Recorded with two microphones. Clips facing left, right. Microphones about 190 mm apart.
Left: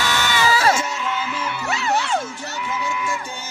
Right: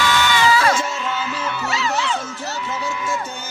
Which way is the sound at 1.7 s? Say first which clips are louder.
Left 2 dB; 55° left (ahead or behind).